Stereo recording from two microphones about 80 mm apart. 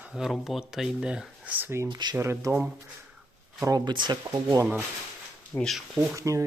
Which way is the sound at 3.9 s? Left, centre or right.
Right.